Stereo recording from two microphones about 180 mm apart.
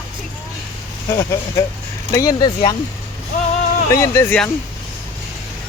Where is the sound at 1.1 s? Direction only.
20° left (ahead or behind).